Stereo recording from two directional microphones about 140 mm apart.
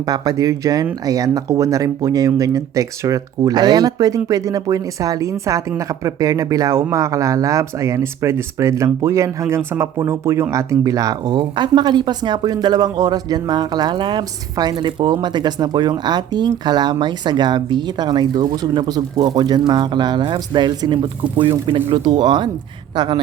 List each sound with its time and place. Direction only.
0.1 s speech: 25° right (ahead or behind)